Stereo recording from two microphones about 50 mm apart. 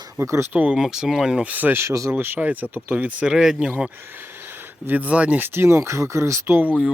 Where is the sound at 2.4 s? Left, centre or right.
Right.